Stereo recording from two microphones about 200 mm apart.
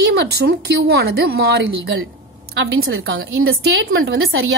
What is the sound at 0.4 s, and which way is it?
A woman's voice, 55° right (ahead or behind).